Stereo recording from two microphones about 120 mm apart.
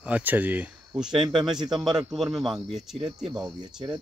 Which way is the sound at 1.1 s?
40° right (ahead or behind).